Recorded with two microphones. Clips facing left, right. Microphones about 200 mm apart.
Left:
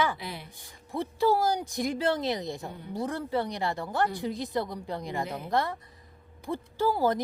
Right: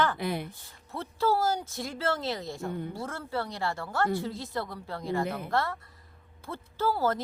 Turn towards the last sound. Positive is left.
turn(degrees=15)  # may be behind; listen again after turning